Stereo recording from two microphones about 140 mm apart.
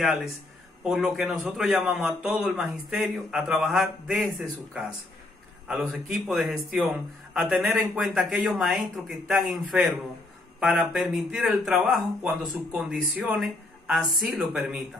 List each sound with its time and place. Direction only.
0.0 s speech: 5° right (ahead or behind)
5.9 s speech: 5° right (ahead or behind)